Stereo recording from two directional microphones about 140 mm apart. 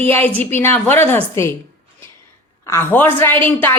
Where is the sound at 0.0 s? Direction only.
15° left (ahead or behind).